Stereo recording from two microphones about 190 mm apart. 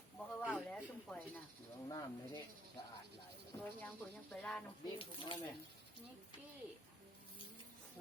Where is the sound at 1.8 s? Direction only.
20° left (ahead or behind).